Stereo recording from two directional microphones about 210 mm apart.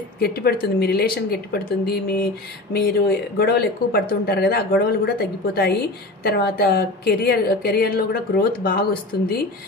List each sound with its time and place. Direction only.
0.2 s a woman's voice: 45° left (ahead or behind)